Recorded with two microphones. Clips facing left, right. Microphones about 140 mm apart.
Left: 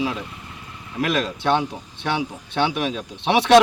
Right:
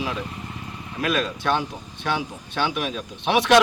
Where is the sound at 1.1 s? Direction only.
25° left (ahead or behind).